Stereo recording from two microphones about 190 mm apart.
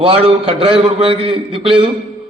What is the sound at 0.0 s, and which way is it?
A man's voice, 30° right (ahead or behind).